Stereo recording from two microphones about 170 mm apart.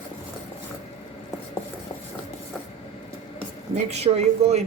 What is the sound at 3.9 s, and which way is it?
Speech, 40° right (ahead or behind).